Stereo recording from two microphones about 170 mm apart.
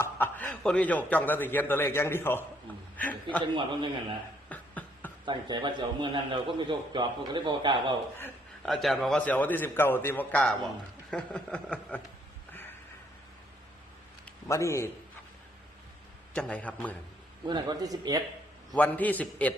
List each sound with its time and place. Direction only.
0.0 s a man's voice: 10° left (ahead or behind)
3.4 s a man's voice: 25° right (ahead or behind)
4.4 s beatboxing: 10° left (ahead or behind)
5.2 s a man's voice: 25° right (ahead or behind)
8.6 s a man's voice: centre (ahead or behind)
14.4 s a man's voice: 20° left (ahead or behind)
16.3 s a man's voice: 5° left (ahead or behind)
17.5 s a man's voice: 25° right (ahead or behind)
18.8 s a man's voice: 10° left (ahead or behind)